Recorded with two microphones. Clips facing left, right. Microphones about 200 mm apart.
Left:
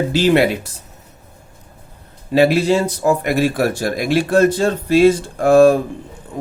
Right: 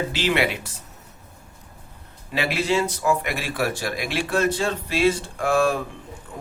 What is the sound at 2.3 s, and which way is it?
Speech, 40° left (ahead or behind).